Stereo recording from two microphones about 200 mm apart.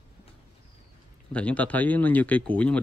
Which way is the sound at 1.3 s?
5° left (ahead or behind).